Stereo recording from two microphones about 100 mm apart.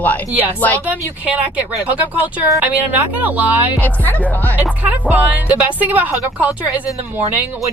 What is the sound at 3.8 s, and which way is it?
Speech, 15° left (ahead or behind).